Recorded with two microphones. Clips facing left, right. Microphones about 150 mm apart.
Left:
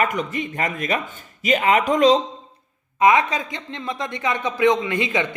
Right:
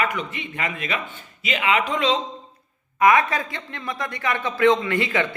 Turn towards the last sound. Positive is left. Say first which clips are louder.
# even
turn(degrees=20)  # may be behind; listen again after turning